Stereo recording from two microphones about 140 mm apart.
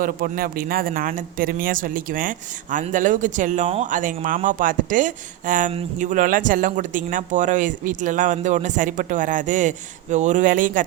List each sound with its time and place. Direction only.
0.0 s speech: 90° right; by 10.8 s 70° right (ahead or behind)